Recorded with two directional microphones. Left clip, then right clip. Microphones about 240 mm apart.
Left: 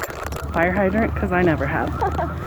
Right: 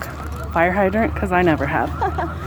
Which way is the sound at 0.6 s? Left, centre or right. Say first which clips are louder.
Right 2 dB; right.